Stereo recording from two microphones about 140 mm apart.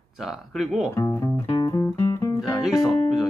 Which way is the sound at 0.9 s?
20° left (ahead or behind).